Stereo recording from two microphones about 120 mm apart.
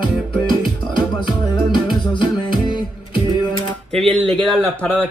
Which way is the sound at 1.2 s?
40° left (ahead or behind).